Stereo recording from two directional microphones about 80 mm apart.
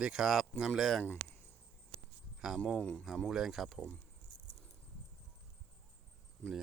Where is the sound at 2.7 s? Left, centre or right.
Centre.